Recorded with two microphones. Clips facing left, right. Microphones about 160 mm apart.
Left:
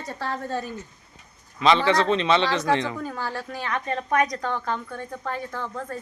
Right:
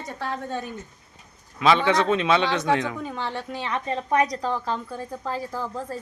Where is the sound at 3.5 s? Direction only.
30° right (ahead or behind).